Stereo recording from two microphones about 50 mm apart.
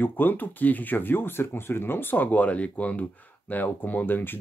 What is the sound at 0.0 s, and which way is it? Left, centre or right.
Speech, left.